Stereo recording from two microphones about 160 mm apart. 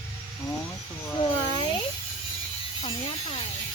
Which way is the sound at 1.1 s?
30° left (ahead or behind).